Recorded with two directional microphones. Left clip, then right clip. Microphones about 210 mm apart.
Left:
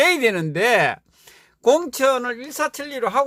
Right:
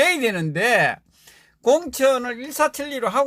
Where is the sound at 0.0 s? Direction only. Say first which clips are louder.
Left 2 dB; 25° left (ahead or behind).